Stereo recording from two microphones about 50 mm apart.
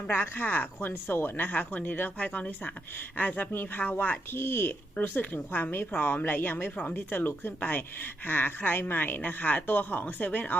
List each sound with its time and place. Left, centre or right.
0.1 s speech: left
4.4 s speech: left